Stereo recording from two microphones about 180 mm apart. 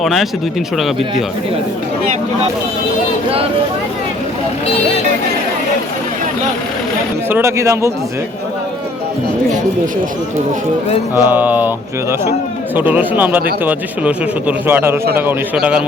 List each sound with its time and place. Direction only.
0.0 s speech: centre (ahead or behind)
7.3 s speech: 15° right (ahead or behind)
11.1 s speech: 10° right (ahead or behind)
12.7 s speech: 10° right (ahead or behind)